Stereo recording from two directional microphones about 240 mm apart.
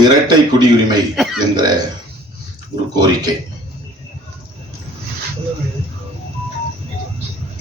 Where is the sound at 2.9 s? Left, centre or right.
Centre.